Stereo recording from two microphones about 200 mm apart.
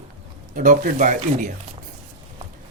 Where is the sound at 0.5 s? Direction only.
40° right (ahead or behind).